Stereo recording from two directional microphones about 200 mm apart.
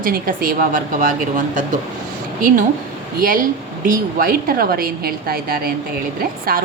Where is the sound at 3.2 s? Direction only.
45° right (ahead or behind).